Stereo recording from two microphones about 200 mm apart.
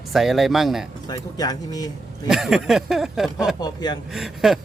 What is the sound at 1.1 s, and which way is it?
Speech, 20° left (ahead or behind).